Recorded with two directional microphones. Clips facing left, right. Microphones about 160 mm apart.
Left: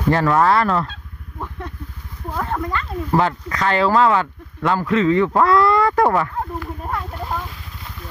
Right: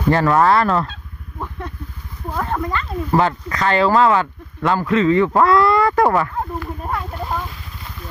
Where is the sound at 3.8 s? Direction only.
20° right (ahead or behind).